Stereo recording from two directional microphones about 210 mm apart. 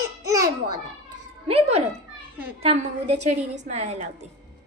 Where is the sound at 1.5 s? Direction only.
30° right (ahead or behind).